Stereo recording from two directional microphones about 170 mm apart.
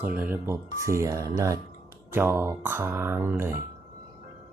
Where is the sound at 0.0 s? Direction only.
10° right (ahead or behind).